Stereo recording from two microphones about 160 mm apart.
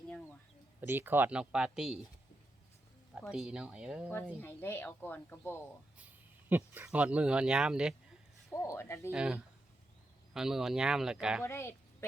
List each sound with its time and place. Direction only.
0.8 s speech: 10° right (ahead or behind)
3.3 s speech: 5° right (ahead or behind)
4.4 s speech: 15° left (ahead or behind)
6.0 s speech: 10° right (ahead or behind)
8.6 s speech: 15° left (ahead or behind)
9.0 s speech: 5° right (ahead or behind)
11.4 s a woman's voice: 15° left (ahead or behind)